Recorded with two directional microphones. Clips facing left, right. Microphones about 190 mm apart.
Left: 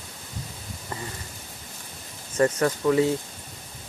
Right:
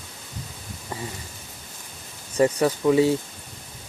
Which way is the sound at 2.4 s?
15° right (ahead or behind).